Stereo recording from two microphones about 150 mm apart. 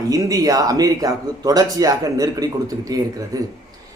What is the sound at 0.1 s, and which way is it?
Speech, 25° right (ahead or behind).